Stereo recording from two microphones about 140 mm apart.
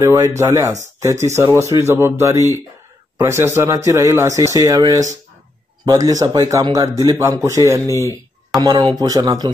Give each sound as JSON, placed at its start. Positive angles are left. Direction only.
{"t": 0.0, "sound": "speech", "side_deg": -20}
{"t": 7.8, "sound": "speech", "side_deg": 20}
{"t": 8.5, "sound": "speech", "side_deg": -35}